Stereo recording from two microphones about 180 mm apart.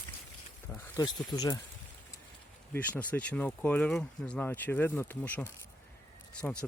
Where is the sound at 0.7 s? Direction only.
20° left (ahead or behind).